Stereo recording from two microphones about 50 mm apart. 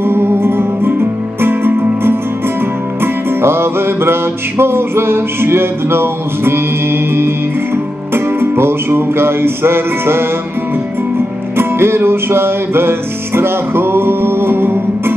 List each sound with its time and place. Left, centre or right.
0.0 s music: right
11.5 s music: right